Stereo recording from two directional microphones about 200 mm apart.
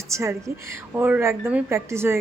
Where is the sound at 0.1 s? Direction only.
15° right (ahead or behind).